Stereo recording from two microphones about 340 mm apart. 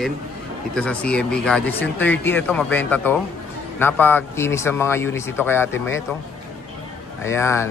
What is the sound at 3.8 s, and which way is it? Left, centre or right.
Speech, centre.